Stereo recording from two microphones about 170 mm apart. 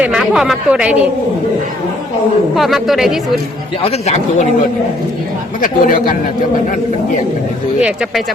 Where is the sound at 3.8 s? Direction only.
40° left (ahead or behind).